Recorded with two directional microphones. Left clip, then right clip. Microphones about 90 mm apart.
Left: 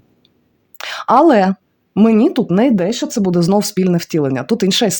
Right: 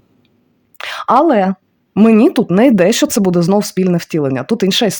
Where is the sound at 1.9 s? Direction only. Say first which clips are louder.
Right 3 dB; 35° right (ahead or behind).